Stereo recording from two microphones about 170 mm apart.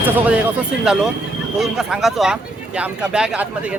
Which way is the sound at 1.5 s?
5° right (ahead or behind).